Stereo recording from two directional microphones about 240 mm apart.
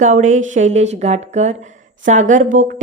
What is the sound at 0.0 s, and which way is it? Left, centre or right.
A woman's voice, right.